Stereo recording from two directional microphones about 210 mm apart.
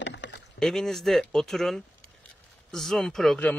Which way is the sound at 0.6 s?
Centre (ahead or behind).